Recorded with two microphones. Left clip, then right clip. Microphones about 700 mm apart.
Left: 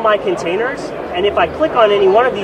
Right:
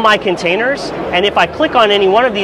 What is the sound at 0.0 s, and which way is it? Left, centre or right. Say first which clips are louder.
Speech: right 3 dB; right.